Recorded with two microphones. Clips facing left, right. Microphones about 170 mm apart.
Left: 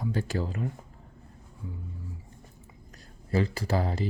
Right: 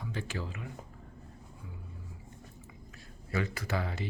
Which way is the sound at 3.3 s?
30° left (ahead or behind).